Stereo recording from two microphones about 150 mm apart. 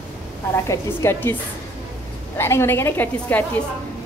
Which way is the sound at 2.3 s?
15° left (ahead or behind).